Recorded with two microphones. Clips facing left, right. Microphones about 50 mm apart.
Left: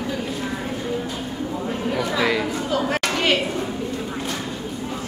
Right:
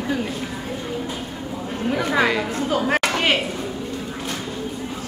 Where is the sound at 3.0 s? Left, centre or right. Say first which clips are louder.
Right 1 dB; centre.